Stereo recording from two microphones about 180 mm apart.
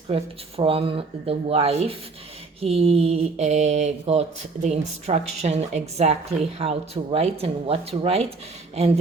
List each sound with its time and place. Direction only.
0.1 s speech: 30° right (ahead or behind)